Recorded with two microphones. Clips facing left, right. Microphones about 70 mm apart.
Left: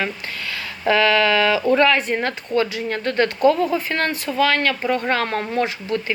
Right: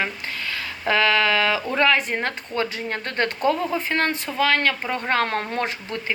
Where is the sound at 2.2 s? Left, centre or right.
Right.